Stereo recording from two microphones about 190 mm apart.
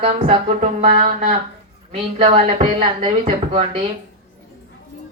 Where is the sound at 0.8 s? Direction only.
45° right (ahead or behind).